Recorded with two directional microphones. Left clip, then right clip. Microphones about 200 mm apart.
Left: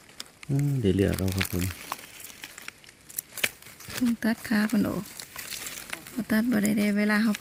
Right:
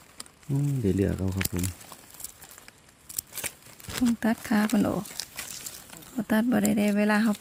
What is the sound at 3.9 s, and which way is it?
Speech, 50° right (ahead or behind).